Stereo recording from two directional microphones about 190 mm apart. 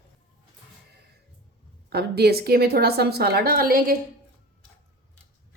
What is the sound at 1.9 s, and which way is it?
A woman's voice, 60° right (ahead or behind).